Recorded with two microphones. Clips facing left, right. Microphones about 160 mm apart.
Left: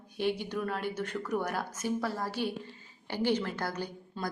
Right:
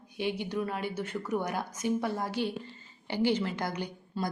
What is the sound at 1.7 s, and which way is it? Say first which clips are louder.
A woman's voice: right 4 dB; 20° right (ahead or behind).